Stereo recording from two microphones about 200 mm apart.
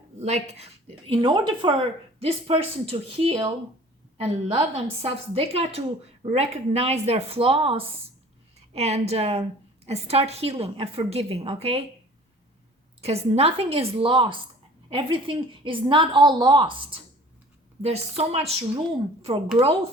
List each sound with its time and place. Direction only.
0.2 s a woman's voice: 35° right (ahead or behind)
13.0 s a woman's voice: 30° right (ahead or behind)